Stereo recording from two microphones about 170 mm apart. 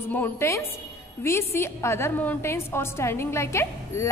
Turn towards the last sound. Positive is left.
turn(degrees=15)  # may be behind; listen again after turning